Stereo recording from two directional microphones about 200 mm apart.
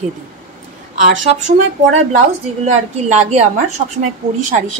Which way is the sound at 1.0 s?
40° right (ahead or behind).